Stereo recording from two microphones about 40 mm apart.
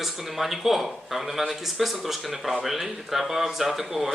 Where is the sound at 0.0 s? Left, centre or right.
Centre.